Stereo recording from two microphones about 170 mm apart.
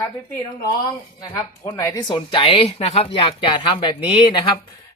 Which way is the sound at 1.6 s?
20° left (ahead or behind).